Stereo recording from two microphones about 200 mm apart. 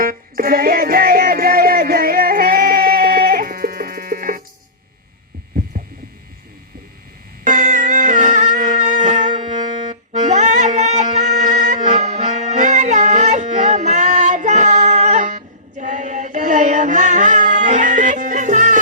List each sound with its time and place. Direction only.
0.0 s music: 45° right (ahead or behind)
7.4 s music: 40° right (ahead or behind)